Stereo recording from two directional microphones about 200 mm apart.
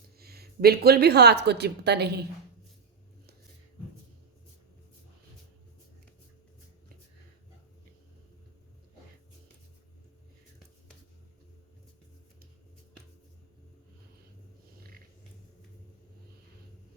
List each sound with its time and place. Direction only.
0.2 s a woman's voice: 50° right (ahead or behind)